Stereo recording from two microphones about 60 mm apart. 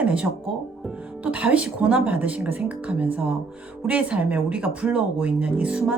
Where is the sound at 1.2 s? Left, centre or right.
Right.